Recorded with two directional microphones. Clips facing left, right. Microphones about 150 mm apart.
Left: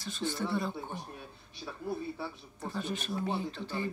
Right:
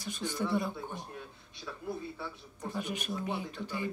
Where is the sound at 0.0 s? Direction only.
15° right (ahead or behind).